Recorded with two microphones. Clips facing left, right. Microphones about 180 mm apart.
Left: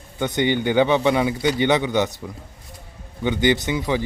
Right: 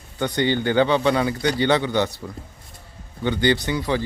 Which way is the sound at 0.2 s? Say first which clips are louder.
Left 1 dB; 20° left (ahead or behind).